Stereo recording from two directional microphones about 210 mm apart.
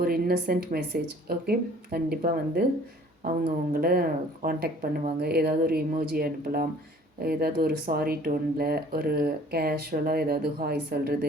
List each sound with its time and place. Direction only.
0.0 s a woman's voice: 45° right (ahead or behind)